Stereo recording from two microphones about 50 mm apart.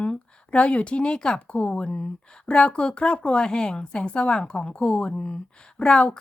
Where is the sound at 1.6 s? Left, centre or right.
Left.